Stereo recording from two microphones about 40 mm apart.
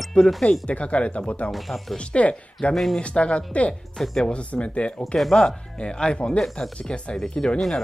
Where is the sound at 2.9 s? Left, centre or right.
Left.